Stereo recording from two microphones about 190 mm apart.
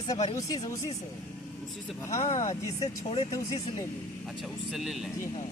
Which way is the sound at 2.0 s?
40° left (ahead or behind).